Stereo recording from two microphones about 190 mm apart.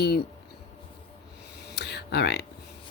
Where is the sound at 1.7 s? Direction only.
60° left (ahead or behind).